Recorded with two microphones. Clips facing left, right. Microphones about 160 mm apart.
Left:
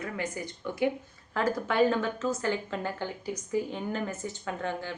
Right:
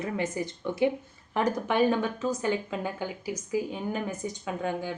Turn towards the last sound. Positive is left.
turn(degrees=-10)  # may be behind; listen again after turning